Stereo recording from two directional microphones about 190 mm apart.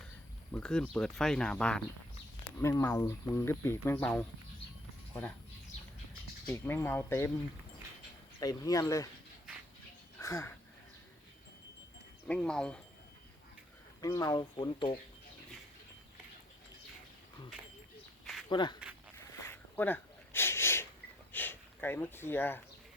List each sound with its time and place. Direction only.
0.5 s speech: 5° left (ahead or behind)
6.5 s speech: 10° left (ahead or behind)
8.4 s speech: 20° left (ahead or behind)
10.2 s a sound: 15° left (ahead or behind)
12.3 s speech: 5° left (ahead or behind)
14.0 s speech: 15° left (ahead or behind)
18.4 s speech: 25° left (ahead or behind)
19.1 s a sound: 15° left (ahead or behind)
21.3 s speech: 10° left (ahead or behind)